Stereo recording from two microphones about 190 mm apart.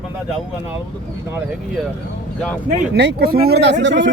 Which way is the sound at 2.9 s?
60° right (ahead or behind).